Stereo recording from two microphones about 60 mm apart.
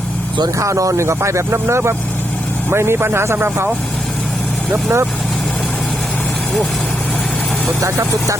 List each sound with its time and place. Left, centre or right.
0.4 s speech: right
1.0 s speech: right
4.7 s speech: right
7.8 s speech: right